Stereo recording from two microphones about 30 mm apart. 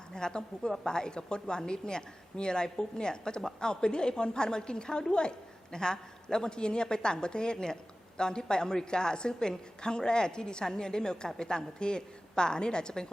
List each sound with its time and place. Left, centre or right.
0.1 s a woman's voice: left